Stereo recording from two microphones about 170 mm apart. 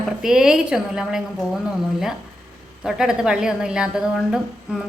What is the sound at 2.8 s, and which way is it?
A woman's voice, 5° right (ahead or behind).